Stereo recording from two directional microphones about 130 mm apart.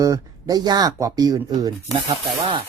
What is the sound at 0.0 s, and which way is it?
Speech, 25° right (ahead or behind).